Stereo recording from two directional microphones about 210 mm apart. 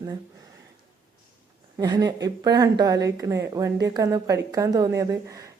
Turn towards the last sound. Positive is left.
turn(degrees=-15)  # may be behind; listen again after turning